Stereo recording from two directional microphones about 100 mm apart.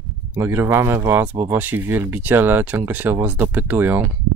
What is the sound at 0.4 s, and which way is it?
Speech, 25° right (ahead or behind).